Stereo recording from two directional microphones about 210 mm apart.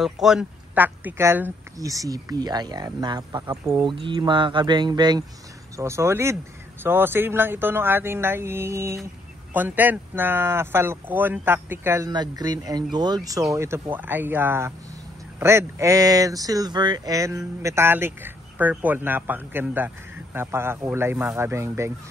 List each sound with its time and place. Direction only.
0.0 s speech: centre (ahead or behind)